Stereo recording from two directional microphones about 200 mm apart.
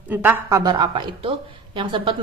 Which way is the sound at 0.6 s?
20° right (ahead or behind).